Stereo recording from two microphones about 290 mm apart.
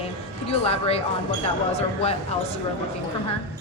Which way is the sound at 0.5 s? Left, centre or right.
Centre.